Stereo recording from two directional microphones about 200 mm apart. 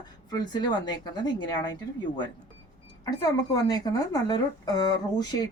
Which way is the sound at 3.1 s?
20° left (ahead or behind).